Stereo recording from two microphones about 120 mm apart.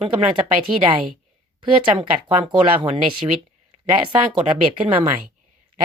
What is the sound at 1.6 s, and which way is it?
A woman's voice, 50° right (ahead or behind).